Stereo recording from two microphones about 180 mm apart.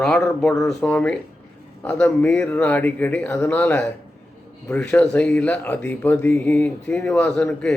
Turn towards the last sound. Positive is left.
turn(degrees=5)  # may be behind; listen again after turning